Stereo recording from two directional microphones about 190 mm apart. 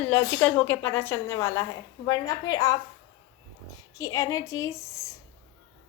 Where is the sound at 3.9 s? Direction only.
15° left (ahead or behind).